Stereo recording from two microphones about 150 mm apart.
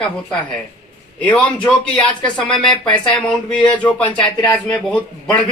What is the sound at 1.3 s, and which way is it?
Speech, 10° left (ahead or behind).